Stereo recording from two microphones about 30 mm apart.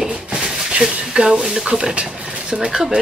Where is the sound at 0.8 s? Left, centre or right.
Right.